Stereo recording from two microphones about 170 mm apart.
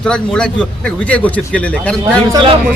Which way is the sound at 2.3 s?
30° right (ahead or behind).